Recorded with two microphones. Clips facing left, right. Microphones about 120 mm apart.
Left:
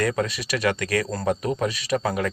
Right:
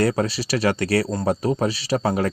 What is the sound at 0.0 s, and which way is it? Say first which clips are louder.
Speech: right 3 dB; 30° right (ahead or behind).